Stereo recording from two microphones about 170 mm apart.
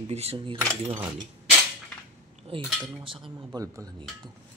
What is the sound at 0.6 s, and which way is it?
Speech, 15° right (ahead or behind).